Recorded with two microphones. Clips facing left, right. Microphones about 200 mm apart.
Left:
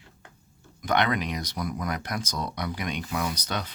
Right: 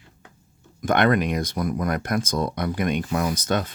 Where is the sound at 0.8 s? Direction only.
50° right (ahead or behind).